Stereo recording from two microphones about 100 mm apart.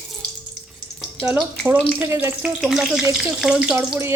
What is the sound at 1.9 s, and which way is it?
Speech, 20° right (ahead or behind).